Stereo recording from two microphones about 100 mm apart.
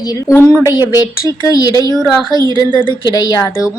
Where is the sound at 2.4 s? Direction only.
45° right (ahead or behind).